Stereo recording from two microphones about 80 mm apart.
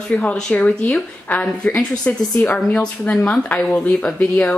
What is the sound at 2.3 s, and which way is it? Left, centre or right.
Speech, centre.